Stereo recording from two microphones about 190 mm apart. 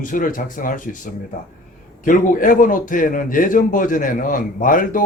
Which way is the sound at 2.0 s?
45° left (ahead or behind).